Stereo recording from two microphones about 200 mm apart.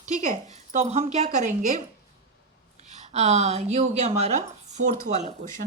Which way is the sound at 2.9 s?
35° right (ahead or behind).